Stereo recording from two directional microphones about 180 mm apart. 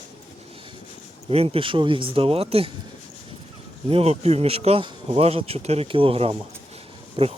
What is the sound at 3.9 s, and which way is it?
Speech, 35° right (ahead or behind).